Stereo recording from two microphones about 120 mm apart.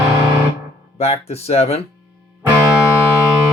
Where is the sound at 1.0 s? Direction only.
60° left (ahead or behind).